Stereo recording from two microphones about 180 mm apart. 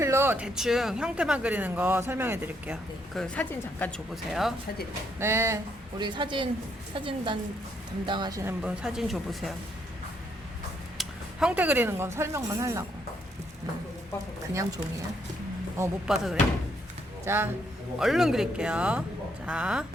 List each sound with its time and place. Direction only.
0.0 s speech: 15° right (ahead or behind)
3.2 s a man's voice: 10° left (ahead or behind)
5.2 s speech: 15° right (ahead or behind)
6.0 s speech: 25° right (ahead or behind); by 9.5 s centre (ahead or behind)
10.9 s speech: 5° right (ahead or behind)
14.5 s speech: 20° right (ahead or behind)
16.0 s a man's voice: 5° right (ahead or behind)
18.0 s a man's voice: centre (ahead or behind)